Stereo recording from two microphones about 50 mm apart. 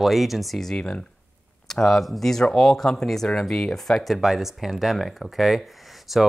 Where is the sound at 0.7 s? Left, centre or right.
Left.